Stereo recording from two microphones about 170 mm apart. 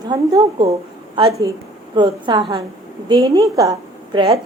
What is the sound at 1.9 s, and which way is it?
A woman's voice, 30° right (ahead or behind).